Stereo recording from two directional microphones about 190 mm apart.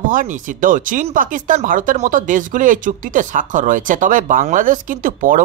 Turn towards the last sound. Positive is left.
turn(degrees=-45)  # may be behind; listen again after turning